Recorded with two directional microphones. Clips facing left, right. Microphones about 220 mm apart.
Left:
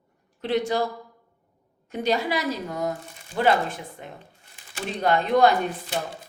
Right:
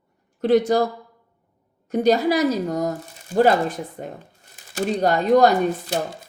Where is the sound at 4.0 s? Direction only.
45° right (ahead or behind).